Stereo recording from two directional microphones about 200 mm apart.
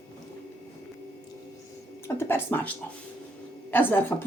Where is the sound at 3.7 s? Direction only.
10° left (ahead or behind).